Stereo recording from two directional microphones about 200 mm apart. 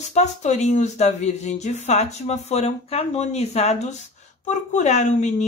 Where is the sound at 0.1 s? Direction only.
35° left (ahead or behind).